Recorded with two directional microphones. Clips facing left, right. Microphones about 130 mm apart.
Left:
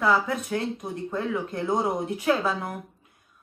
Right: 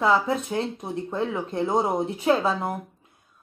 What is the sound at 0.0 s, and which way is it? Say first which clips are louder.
A woman's voice: right 2 dB; 25° right (ahead or behind).